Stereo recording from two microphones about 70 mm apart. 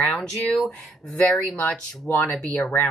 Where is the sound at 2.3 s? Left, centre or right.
Centre.